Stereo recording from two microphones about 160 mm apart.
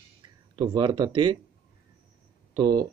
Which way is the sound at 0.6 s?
30° right (ahead or behind).